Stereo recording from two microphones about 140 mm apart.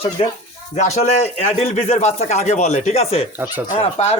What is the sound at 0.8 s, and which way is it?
Speech, 55° left (ahead or behind).